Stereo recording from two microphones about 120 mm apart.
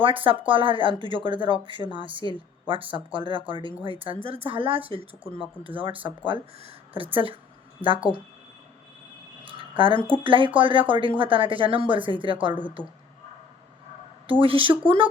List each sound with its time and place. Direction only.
0.0 s speech: 45° right (ahead or behind)
9.4 s a sound: 45° right (ahead or behind)
10.2 s speech: 45° right (ahead or behind)
14.4 s speech: 45° right (ahead or behind)